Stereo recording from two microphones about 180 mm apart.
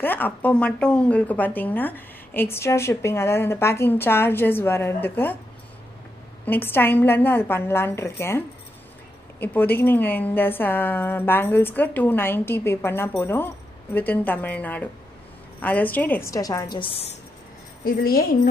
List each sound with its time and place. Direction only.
0.0 s speech: 10° left (ahead or behind)
6.4 s speech: 10° left (ahead or behind)
9.4 s speech: 10° left (ahead or behind)
17.8 s a woman's voice: 55° left (ahead or behind)